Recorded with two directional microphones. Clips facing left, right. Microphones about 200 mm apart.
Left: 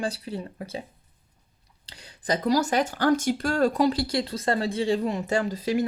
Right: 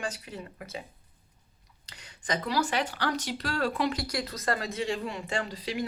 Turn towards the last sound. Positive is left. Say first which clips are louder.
# left 7 dB
turn(degrees=45)  # may be behind; listen again after turning